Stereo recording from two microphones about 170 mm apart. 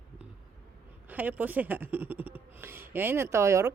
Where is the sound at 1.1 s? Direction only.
10° right (ahead or behind).